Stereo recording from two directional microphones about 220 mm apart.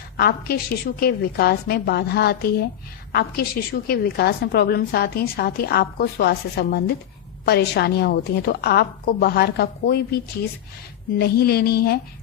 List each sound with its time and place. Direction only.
0.2 s a woman's voice: 45° left (ahead or behind)
11.2 s a woman's voice: 45° left (ahead or behind)